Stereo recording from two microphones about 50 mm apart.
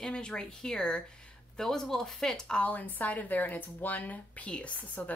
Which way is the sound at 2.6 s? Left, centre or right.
Left.